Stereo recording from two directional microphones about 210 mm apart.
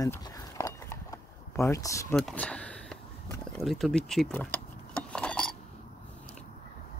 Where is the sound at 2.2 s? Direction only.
5° left (ahead or behind).